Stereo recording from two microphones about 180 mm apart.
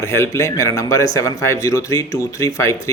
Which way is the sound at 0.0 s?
15° left (ahead or behind).